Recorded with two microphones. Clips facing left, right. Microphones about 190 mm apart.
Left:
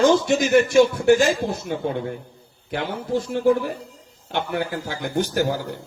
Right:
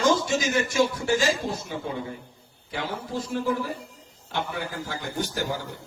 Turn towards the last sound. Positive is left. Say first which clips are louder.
# left 7 dB
turn(degrees=70)  # may be behind; listen again after turning